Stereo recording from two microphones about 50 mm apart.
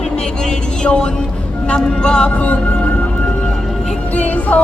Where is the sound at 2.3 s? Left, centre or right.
Left.